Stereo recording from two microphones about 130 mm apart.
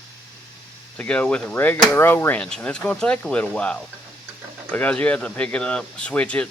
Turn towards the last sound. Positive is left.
turn(degrees=10)  # may be behind; listen again after turning